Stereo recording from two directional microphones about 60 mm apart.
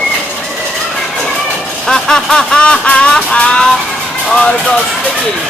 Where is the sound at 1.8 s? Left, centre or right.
Centre.